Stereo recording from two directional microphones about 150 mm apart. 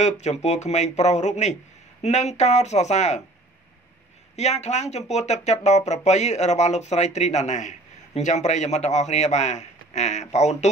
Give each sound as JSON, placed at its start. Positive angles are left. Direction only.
{"t": 0.0, "sound": "speech", "side_deg": 50}
{"t": 4.4, "sound": "speech", "side_deg": 50}